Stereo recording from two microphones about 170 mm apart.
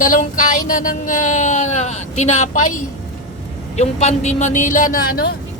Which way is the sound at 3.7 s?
40° left (ahead or behind).